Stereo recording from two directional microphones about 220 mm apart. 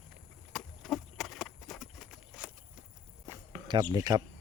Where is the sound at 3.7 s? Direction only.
20° right (ahead or behind).